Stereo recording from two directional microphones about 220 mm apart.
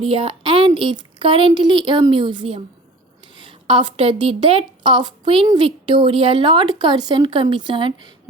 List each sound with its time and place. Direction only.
0.0 s a woman's voice: 25° right (ahead or behind)